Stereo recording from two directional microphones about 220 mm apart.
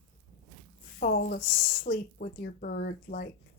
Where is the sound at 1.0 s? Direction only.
40° left (ahead or behind).